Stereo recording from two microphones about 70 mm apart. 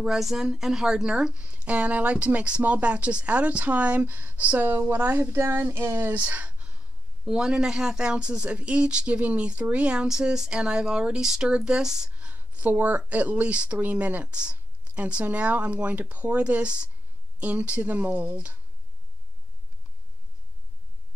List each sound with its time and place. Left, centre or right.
0.0 s speech: centre; by 5.4 s right
5.4 s a sound: right
6.1 s speech: centre